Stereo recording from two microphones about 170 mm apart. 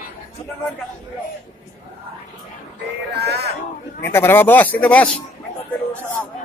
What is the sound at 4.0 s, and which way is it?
Speech, 15° left (ahead or behind).